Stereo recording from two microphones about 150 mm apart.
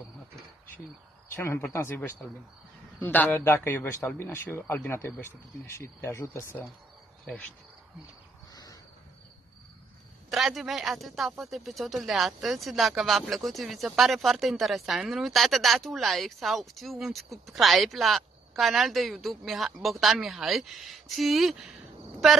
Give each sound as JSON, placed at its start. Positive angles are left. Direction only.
{"t": 1.3, "sound": "a man's voice", "side_deg": 15}
{"t": 10.3, "sound": "speech", "side_deg": 0}